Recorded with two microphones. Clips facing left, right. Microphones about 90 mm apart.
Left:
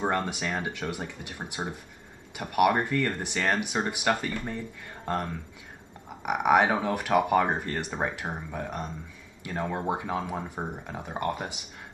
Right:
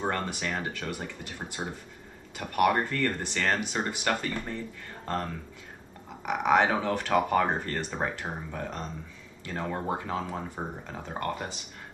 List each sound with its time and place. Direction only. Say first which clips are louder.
0.0 s speech: left 2 dB; 15° left (ahead or behind)